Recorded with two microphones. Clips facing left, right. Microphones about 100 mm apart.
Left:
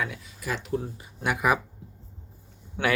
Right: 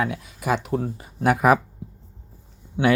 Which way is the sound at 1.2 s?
45° right (ahead or behind).